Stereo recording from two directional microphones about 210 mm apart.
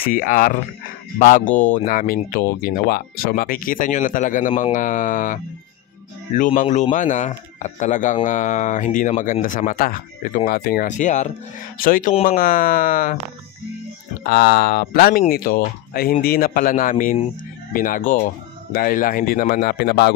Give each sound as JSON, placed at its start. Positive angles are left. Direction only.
{"t": 0.0, "sound": "speech", "side_deg": 40}
{"t": 1.9, "sound": "speech", "side_deg": 40}
{"t": 14.2, "sound": "speech", "side_deg": 50}